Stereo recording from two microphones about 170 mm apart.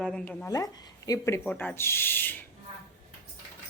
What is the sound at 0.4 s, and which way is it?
Speech, 20° left (ahead or behind).